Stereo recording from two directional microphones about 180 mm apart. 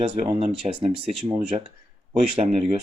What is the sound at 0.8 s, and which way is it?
Speech, 25° right (ahead or behind).